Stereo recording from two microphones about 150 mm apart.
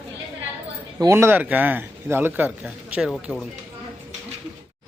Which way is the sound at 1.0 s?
20° right (ahead or behind).